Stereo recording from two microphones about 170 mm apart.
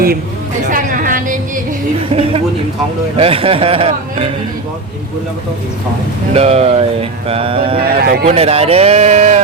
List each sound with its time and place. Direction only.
0.7 s a sound: 50° right (ahead or behind)
2.0 s a sound: 35° right (ahead or behind)
3.2 s speech: 35° right (ahead or behind)
6.3 s speech: 35° right (ahead or behind)
7.9 s speech: 65° right (ahead or behind)
8.3 s speech: 35° right (ahead or behind)